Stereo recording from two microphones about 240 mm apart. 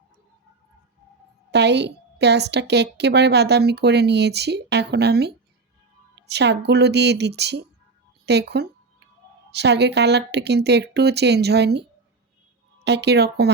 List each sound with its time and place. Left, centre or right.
1.5 s a woman's voice: right